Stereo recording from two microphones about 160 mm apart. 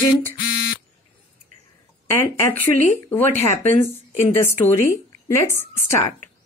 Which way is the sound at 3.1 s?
15° left (ahead or behind).